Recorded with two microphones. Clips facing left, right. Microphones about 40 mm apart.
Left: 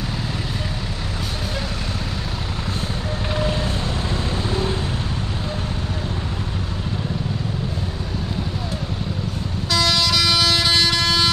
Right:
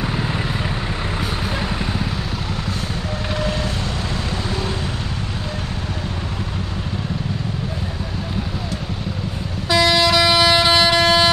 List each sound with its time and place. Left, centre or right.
9.7 s vehicle: centre